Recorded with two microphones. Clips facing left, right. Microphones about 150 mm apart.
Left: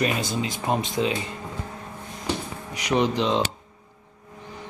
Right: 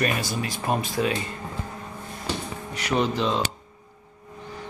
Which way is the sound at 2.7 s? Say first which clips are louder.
Left 2 dB; 15° left (ahead or behind).